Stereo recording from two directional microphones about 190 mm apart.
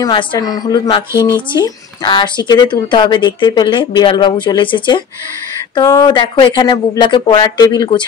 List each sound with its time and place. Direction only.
0.0 s speech: 20° left (ahead or behind)